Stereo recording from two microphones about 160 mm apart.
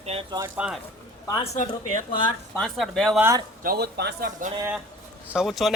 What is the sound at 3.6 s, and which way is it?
Speech, 90° right.